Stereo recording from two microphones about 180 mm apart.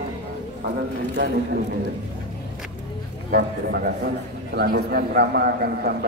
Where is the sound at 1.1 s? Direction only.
75° right (ahead or behind).